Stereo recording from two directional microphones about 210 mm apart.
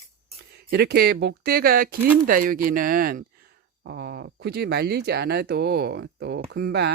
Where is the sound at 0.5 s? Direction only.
50° right (ahead or behind).